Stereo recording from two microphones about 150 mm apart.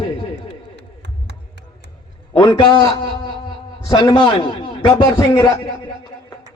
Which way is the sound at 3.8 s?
25° left (ahead or behind).